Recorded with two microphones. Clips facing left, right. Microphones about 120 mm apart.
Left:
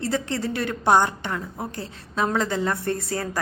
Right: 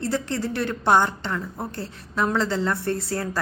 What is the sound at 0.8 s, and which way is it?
A woman's voice, 15° left (ahead or behind).